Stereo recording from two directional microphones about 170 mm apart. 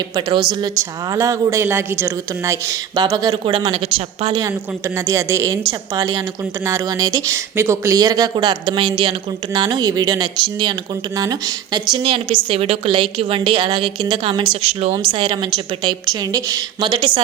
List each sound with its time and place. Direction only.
0.2 s speech: 25° right (ahead or behind)